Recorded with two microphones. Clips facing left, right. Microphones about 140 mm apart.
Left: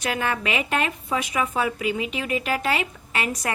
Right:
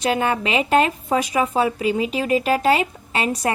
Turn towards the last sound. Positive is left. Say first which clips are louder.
# right 5 dB
turn(degrees=-30)  # may be behind; listen again after turning